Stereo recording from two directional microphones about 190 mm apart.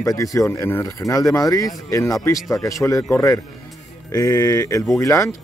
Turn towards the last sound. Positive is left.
turn(degrees=15)  # may be behind; listen again after turning